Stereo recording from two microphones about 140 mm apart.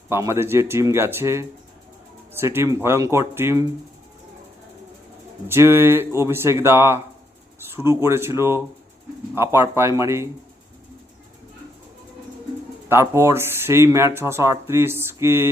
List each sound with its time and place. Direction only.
0.1 s speech: 20° right (ahead or behind)
5.5 s speech: 15° right (ahead or behind)
12.9 s speech: 20° right (ahead or behind)